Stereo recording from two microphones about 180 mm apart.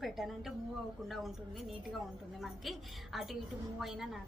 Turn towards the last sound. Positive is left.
turn(degrees=0)  # may be behind; listen again after turning